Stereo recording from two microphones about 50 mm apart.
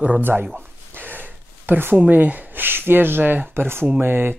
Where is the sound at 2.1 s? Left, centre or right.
Right.